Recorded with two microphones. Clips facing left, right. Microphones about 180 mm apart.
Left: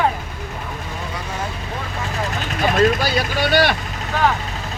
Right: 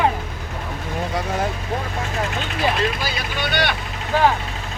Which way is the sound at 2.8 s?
45° left (ahead or behind).